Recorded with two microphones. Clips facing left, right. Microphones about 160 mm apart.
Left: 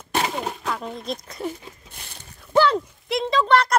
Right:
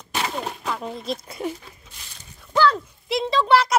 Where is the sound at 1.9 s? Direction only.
60° left (ahead or behind).